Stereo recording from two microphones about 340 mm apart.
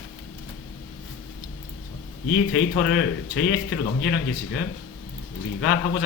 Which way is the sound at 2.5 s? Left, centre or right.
Left.